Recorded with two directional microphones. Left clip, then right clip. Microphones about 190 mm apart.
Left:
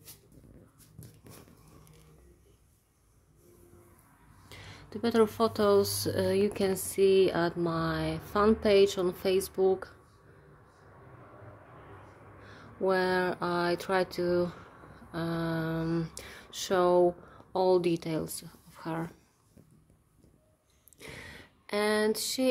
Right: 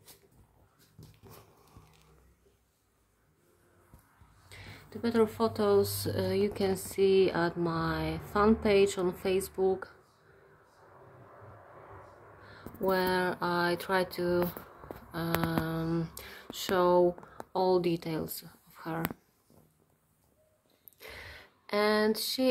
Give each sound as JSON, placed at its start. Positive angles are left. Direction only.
{"t": 4.5, "sound": "speech", "side_deg": 30}
{"t": 12.4, "sound": "speech", "side_deg": 20}
{"t": 21.0, "sound": "a sound", "side_deg": 15}